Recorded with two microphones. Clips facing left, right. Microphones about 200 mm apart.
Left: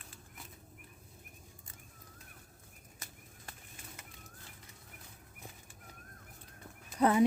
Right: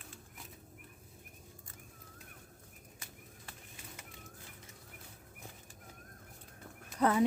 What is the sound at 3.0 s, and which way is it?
Bird, 40° left (ahead or behind).